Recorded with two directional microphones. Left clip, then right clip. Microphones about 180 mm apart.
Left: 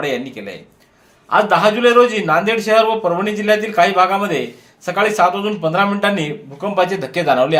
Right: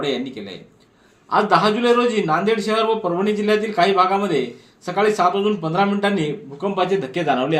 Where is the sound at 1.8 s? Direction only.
15° left (ahead or behind).